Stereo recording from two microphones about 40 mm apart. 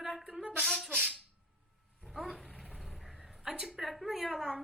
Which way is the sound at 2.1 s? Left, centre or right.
Centre.